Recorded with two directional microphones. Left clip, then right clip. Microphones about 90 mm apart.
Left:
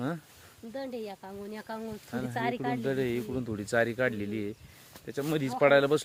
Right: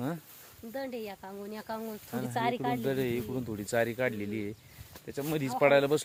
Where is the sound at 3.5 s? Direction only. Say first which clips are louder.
Left 2 dB; 40° left (ahead or behind).